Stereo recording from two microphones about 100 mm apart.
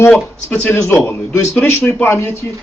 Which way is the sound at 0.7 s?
25° left (ahead or behind).